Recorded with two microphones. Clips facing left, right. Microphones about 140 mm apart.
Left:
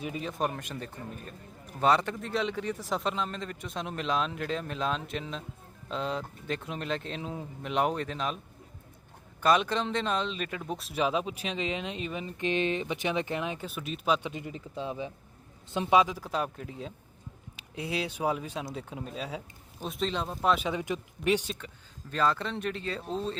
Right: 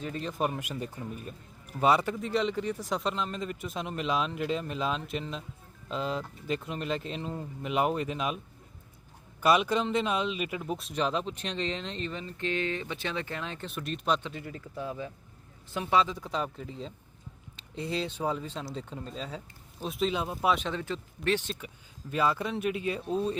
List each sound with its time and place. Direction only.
0.0 s speech: 5° left (ahead or behind)
9.4 s speech: 5° right (ahead or behind)
14.3 s speech: 20° left (ahead or behind)
19.8 s speech: centre (ahead or behind)
20.6 s speech: 10° left (ahead or behind)
22.1 s speech: 10° right (ahead or behind)